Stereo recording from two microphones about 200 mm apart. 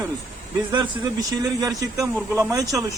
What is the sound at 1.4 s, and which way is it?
Speech, 15° right (ahead or behind).